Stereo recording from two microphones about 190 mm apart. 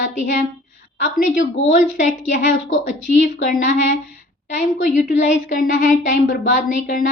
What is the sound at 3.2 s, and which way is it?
A woman's voice, 45° left (ahead or behind).